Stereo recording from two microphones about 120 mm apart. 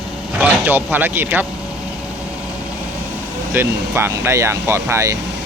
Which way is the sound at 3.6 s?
20° right (ahead or behind).